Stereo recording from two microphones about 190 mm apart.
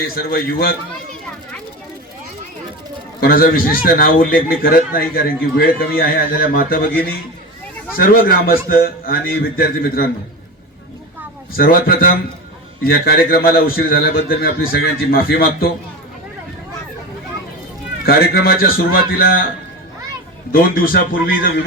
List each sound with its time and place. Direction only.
0.2 s a man's voice: 50° left (ahead or behind)
3.2 s a man's voice: 50° left (ahead or behind)
7.9 s a man's voice: 50° left (ahead or behind)
11.5 s a man's voice: 50° left (ahead or behind)
18.0 s a man's voice: 55° left (ahead or behind)
20.5 s a man's voice: 50° left (ahead or behind)